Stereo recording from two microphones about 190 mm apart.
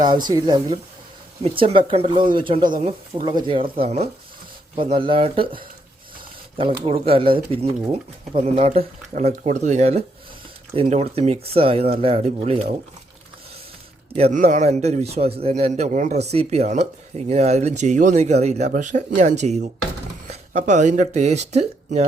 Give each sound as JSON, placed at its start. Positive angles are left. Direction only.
{"t": 0.0, "sound": "speech", "side_deg": -20}
{"t": 6.6, "sound": "speech", "side_deg": -30}
{"t": 14.2, "sound": "speech", "side_deg": -40}